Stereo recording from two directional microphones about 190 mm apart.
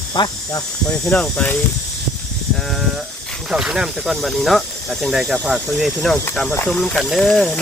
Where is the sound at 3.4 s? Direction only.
5° right (ahead or behind).